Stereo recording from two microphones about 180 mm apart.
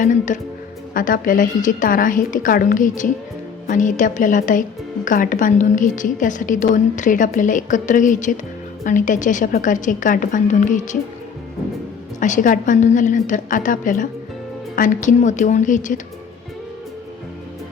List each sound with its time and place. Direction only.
0.0 s a woman's voice: 45° left (ahead or behind)
12.2 s a woman's voice: 45° left (ahead or behind)